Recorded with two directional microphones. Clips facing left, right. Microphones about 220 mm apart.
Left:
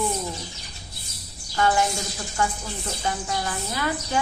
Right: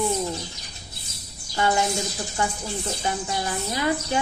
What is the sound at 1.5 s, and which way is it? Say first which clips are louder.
A woman's voice: even; 20° right (ahead or behind).